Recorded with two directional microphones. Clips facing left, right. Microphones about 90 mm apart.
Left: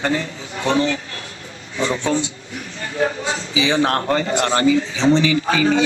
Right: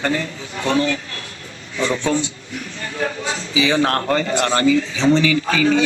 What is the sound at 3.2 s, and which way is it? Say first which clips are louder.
A man's voice: right 1 dB; 25° left (ahead or behind).